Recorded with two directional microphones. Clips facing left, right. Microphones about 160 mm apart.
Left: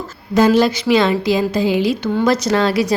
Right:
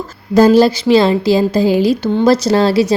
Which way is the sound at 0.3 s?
35° right (ahead or behind).